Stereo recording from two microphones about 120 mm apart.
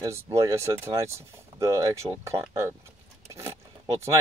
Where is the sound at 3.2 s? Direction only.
25° right (ahead or behind).